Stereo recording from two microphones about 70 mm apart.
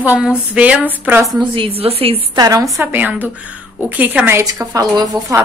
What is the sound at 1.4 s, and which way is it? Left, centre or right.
Speech, right.